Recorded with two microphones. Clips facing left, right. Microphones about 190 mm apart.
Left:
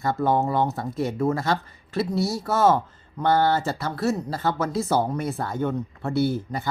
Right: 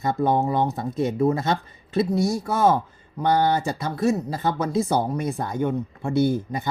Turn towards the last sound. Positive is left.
turn(degrees=-20)  # may be behind; listen again after turning